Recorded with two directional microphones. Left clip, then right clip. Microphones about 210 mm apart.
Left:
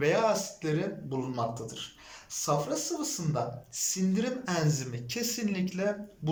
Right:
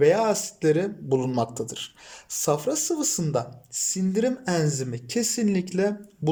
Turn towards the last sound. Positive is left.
turn(degrees=-45)  # may be behind; listen again after turning